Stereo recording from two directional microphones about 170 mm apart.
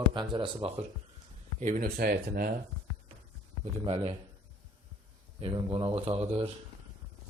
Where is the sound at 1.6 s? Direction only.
55° right (ahead or behind).